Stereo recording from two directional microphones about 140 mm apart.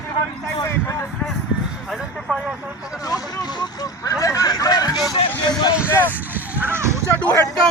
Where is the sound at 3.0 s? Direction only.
25° left (ahead or behind).